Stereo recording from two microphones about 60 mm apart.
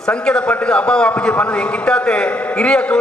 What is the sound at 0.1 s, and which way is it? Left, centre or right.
A man's voice, centre.